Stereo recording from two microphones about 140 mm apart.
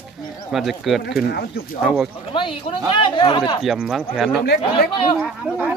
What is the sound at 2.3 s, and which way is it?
Speech, 35° left (ahead or behind).